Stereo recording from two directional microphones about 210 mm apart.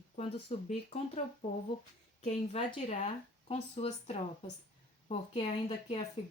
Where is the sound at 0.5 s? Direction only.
30° left (ahead or behind).